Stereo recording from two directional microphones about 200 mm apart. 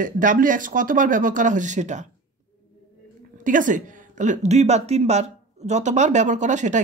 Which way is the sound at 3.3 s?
40° right (ahead or behind).